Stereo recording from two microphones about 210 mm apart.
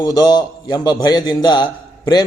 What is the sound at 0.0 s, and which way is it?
A man's voice, 20° left (ahead or behind).